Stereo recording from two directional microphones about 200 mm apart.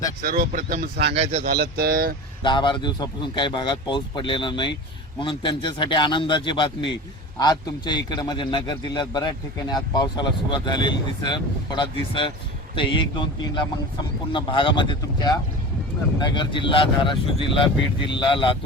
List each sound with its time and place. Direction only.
0.2 s speech: 45° right (ahead or behind)
1.1 s speech: 35° right (ahead or behind)
1.5 s speech: 50° right (ahead or behind)
2.4 s a man's voice: 25° left (ahead or behind)